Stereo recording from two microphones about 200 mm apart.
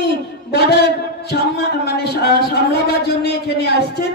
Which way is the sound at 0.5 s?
55° left (ahead or behind).